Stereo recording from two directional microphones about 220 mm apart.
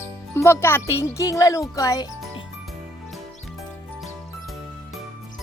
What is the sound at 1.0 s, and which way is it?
A child's voice, 15° left (ahead or behind).